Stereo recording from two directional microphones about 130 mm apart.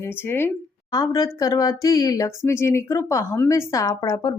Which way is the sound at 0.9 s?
30° left (ahead or behind).